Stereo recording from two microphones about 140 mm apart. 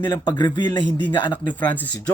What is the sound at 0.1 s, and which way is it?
A man's voice, 30° left (ahead or behind).